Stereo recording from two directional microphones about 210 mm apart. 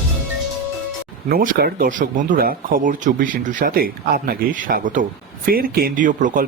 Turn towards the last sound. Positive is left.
turn(degrees=-40)  # may be behind; listen again after turning